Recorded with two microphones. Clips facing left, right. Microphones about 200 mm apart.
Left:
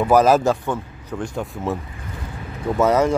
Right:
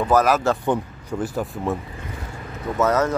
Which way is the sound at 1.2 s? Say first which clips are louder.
Right 1 dB; 5° right (ahead or behind).